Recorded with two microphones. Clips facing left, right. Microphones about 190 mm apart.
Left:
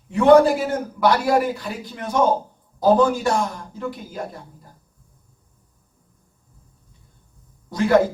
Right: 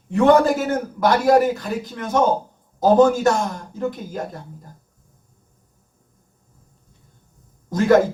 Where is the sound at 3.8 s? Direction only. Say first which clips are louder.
Right 5 dB; 40° right (ahead or behind).